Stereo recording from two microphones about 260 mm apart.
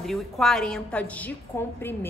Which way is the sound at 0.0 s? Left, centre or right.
Centre.